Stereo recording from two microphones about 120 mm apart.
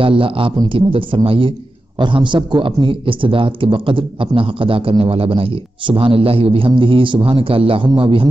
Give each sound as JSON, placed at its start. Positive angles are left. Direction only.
{"t": 0.0, "sound": "a man's voice", "side_deg": -50}